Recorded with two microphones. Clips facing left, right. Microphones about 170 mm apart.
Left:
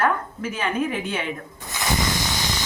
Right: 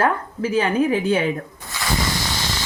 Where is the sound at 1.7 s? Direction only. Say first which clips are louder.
Even; 20° left (ahead or behind).